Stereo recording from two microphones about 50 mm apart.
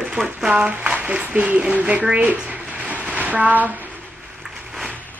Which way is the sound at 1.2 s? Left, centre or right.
Right.